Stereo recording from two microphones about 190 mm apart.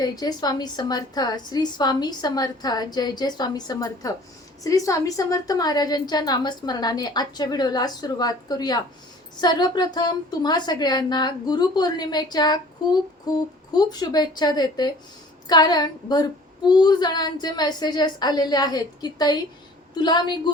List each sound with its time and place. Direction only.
0.0 s a woman's voice: 20° left (ahead or behind)